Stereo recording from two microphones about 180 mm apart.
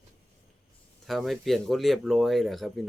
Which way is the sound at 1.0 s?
Centre (ahead or behind).